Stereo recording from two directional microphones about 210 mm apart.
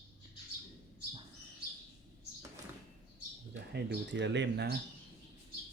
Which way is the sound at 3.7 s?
55° right (ahead or behind).